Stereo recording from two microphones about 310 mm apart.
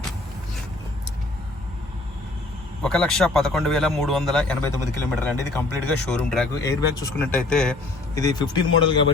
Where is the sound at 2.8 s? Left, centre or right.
Centre.